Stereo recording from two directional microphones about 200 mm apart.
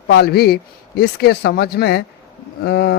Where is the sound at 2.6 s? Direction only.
55° left (ahead or behind).